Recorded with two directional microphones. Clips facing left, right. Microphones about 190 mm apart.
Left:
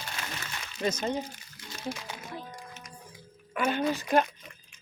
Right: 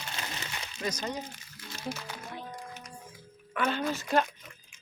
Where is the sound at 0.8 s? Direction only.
25° left (ahead or behind).